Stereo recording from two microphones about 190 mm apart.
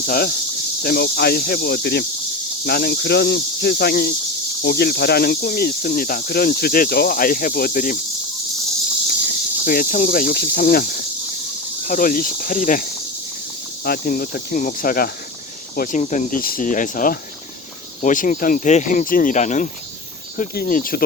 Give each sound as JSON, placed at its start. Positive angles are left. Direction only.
{"t": 0.0, "sound": "speech", "side_deg": 55}
{"t": 9.6, "sound": "speech", "side_deg": 45}